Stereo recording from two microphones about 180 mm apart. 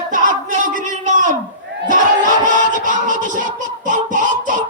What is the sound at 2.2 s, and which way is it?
Music, 45° right (ahead or behind).